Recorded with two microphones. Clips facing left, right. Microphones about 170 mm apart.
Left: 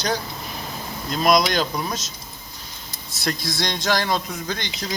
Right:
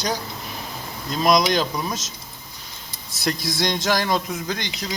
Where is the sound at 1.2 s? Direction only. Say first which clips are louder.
Even; 20° right (ahead or behind).